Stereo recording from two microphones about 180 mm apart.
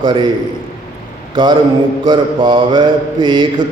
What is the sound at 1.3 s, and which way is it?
Speech, 25° right (ahead or behind).